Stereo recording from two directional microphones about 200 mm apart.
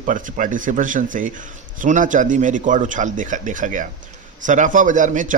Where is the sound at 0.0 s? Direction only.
40° right (ahead or behind).